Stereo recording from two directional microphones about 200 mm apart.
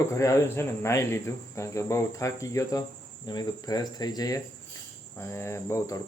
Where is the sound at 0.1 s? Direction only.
15° left (ahead or behind).